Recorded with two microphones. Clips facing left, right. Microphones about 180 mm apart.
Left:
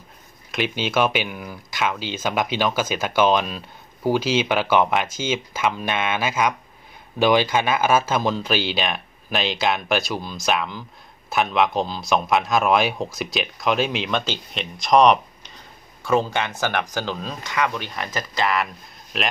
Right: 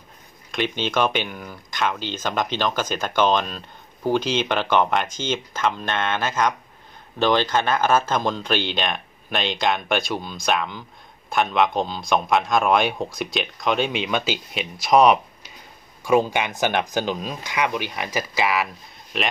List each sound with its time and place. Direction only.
0.5 s speech: 5° left (ahead or behind)